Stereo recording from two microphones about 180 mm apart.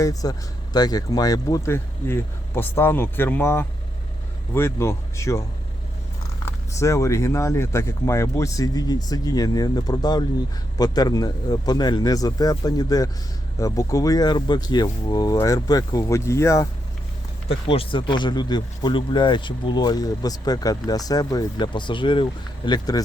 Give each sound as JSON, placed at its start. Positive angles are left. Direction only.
{"t": 0.0, "sound": "speech", "side_deg": 20}
{"t": 6.7, "sound": "speech", "side_deg": 15}
{"t": 17.5, "sound": "speech", "side_deg": 30}